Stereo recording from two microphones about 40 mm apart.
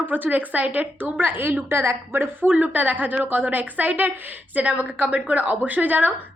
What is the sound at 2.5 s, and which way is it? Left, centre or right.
Speech, right.